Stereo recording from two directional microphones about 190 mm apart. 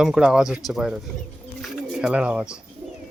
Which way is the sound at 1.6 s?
5° right (ahead or behind).